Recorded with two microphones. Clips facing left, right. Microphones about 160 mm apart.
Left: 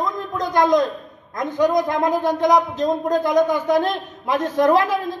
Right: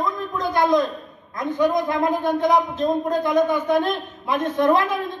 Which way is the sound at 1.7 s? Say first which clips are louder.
Left 2 dB; 40° left (ahead or behind).